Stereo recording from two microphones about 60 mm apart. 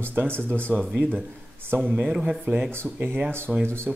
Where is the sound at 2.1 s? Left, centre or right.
Centre.